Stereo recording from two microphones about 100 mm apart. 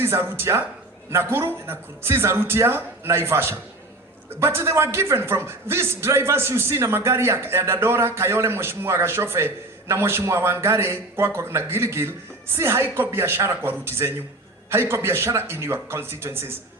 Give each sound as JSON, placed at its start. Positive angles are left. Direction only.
{"t": 0.0, "sound": "a man's voice", "side_deg": -25}